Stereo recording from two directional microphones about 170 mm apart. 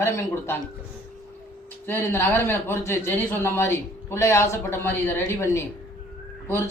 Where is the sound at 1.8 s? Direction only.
15° left (ahead or behind).